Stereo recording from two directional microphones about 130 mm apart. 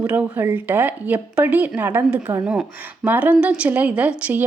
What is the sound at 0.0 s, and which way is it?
A woman's voice, 10° right (ahead or behind).